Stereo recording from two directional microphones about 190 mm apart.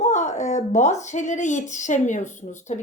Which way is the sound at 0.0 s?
40° left (ahead or behind).